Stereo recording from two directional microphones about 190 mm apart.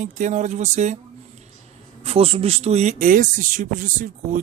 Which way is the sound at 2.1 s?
30° right (ahead or behind).